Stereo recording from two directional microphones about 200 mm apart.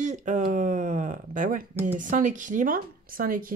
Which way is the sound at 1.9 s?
40° right (ahead or behind).